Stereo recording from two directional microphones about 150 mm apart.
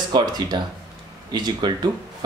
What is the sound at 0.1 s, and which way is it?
Speech, 25° right (ahead or behind).